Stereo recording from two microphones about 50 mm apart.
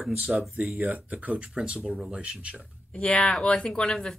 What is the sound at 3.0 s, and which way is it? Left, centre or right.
Speech, centre.